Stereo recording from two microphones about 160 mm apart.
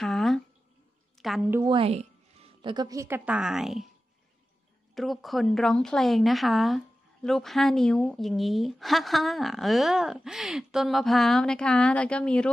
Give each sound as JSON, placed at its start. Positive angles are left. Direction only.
{"t": 0.0, "sound": "a sound", "side_deg": 0}
{"t": 1.2, "sound": "a woman's voice", "side_deg": 0}
{"t": 1.7, "sound": "speech", "side_deg": -40}
{"t": 3.3, "sound": "a woman's voice", "side_deg": -5}
{"t": 4.9, "sound": "a woman's voice", "side_deg": 0}